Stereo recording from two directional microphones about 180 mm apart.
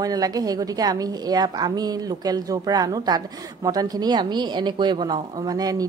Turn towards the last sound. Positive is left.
turn(degrees=-20)  # may be behind; listen again after turning